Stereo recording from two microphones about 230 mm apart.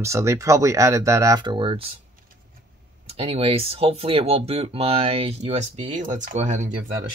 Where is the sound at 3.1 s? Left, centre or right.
Right.